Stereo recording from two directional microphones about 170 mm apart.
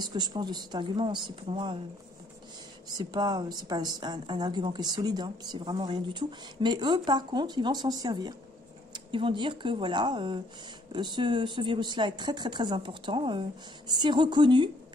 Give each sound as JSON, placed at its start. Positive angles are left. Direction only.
{"t": 0.0, "sound": "a woman's voice", "side_deg": -25}
{"t": 2.9, "sound": "a woman's voice", "side_deg": -25}